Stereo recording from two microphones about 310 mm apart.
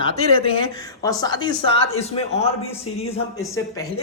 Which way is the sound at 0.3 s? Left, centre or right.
Centre.